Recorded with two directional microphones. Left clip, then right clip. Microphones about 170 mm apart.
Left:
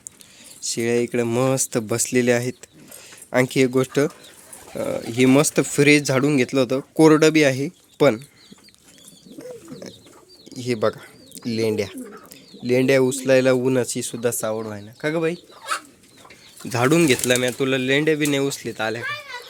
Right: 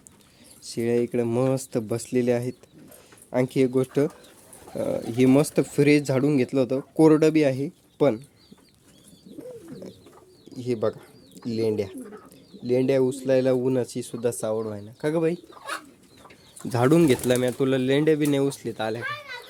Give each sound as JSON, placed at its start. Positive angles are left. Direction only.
{"t": 0.6, "sound": "speech", "side_deg": -10}
{"t": 10.5, "sound": "speech", "side_deg": 0}
{"t": 16.6, "sound": "speech", "side_deg": -20}